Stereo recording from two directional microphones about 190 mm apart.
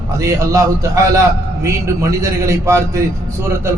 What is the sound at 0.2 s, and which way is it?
A man's voice, 15° right (ahead or behind).